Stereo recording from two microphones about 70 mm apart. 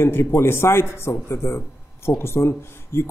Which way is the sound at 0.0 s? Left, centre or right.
Left.